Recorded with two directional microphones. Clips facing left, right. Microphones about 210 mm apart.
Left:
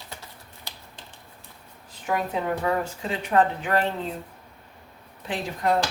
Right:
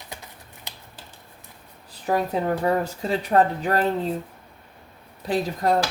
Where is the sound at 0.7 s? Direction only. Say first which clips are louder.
Right 1 dB; 20° right (ahead or behind).